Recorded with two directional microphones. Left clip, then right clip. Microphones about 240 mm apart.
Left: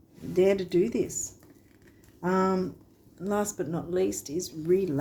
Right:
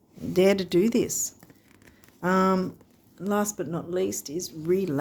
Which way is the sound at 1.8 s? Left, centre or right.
Right.